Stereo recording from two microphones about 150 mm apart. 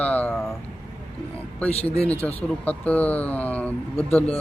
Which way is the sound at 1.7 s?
45° left (ahead or behind).